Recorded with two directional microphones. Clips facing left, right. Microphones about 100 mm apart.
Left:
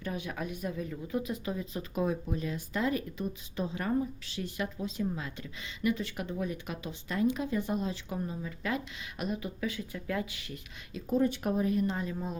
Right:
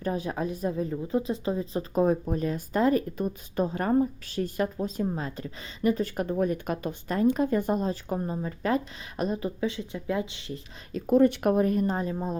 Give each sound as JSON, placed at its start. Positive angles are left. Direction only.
{"t": 0.0, "sound": "a woman's voice", "side_deg": -35}
{"t": 10.9, "sound": "speech", "side_deg": -60}